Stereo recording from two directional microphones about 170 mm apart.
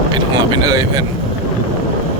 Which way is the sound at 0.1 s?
25° right (ahead or behind).